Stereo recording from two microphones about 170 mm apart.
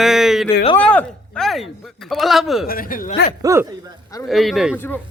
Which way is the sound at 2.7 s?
55° left (ahead or behind).